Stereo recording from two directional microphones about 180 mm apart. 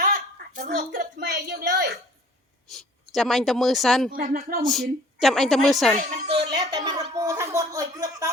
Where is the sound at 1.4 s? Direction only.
65° right (ahead or behind).